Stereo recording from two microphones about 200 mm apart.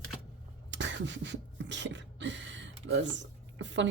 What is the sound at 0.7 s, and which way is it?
Beatboxing, 65° right (ahead or behind).